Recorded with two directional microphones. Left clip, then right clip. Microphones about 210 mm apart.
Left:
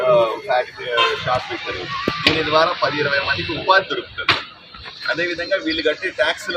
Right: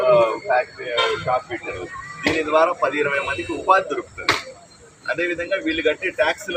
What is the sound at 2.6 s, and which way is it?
A man's voice, centre (ahead or behind).